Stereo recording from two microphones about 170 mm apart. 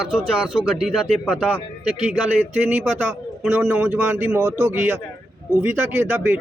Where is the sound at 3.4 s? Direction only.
10° right (ahead or behind).